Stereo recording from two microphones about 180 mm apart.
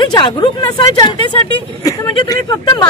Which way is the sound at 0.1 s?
25° left (ahead or behind).